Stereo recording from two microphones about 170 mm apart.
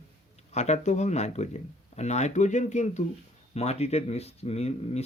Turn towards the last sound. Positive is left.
turn(degrees=40)  # may be behind; listen again after turning